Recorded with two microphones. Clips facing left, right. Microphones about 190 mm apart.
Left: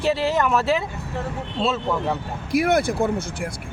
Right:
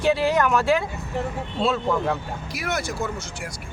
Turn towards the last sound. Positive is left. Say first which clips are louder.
# left 7 dB
turn(degrees=55)  # may be behind; listen again after turning